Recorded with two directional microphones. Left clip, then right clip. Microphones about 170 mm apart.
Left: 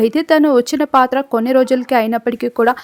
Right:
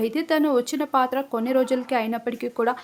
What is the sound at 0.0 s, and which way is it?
Speech, 45° left (ahead or behind).